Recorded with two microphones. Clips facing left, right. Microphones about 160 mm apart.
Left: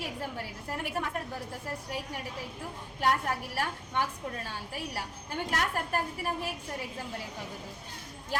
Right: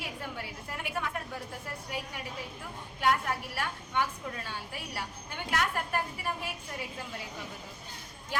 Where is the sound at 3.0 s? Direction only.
40° left (ahead or behind).